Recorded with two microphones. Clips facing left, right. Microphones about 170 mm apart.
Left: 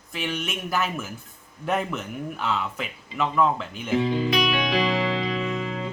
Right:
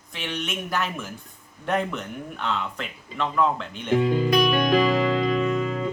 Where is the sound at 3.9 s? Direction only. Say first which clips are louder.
Right 3 dB; 50° right (ahead or behind).